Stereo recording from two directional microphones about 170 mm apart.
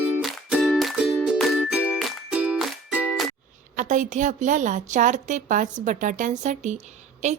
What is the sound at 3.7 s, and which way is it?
A woman's voice, 45° right (ahead or behind).